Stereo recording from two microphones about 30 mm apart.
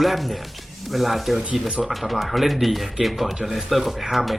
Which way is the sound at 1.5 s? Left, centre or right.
Right.